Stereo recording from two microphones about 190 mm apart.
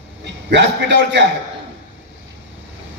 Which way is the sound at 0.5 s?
65° right (ahead or behind).